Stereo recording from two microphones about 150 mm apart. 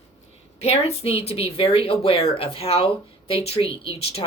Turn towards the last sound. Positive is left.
turn(degrees=40)  # may be behind; listen again after turning